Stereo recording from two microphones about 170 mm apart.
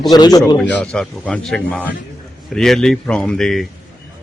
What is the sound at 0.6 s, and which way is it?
Speech, 5° left (ahead or behind).